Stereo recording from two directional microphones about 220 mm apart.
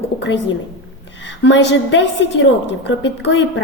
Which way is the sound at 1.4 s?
55° left (ahead or behind).